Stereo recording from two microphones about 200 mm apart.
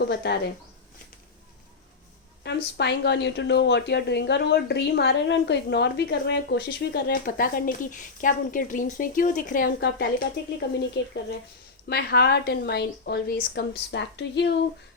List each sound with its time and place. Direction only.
0.0 s speech: 55° left (ahead or behind)
2.4 s speech: 60° left (ahead or behind)